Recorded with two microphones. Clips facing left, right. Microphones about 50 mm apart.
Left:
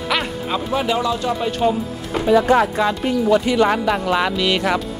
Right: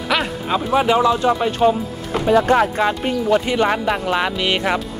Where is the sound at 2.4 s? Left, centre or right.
Right.